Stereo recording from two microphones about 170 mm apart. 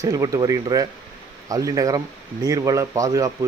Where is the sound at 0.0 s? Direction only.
20° right (ahead or behind).